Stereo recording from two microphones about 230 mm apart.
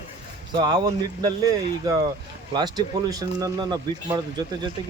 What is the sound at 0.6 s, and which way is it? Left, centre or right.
Speech, centre.